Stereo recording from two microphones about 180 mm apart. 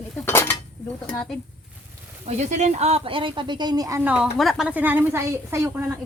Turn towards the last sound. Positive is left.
turn(degrees=-15)  # may be behind; listen again after turning